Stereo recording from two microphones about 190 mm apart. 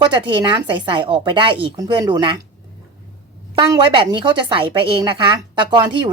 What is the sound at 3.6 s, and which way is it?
Speech, 25° right (ahead or behind).